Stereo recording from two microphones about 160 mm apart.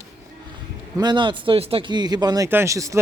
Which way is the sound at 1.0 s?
30° right (ahead or behind).